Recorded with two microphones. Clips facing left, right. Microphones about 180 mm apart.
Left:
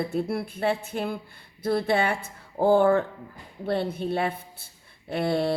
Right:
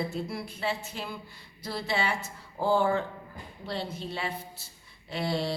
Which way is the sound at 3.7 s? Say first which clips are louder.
Left 9 dB; 55° left (ahead or behind).